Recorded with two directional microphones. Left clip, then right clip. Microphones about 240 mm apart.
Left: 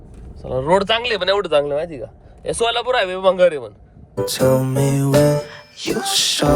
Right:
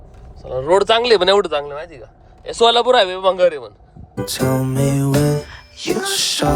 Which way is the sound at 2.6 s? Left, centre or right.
Centre.